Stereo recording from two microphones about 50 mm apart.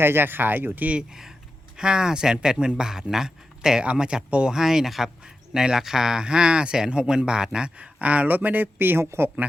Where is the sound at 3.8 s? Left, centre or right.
Right.